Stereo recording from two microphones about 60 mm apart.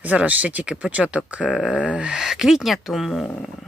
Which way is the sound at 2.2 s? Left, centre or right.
Centre.